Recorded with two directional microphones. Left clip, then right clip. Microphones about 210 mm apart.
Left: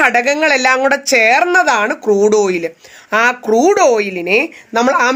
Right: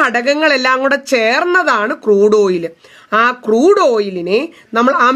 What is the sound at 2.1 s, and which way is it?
Speech, 90° right.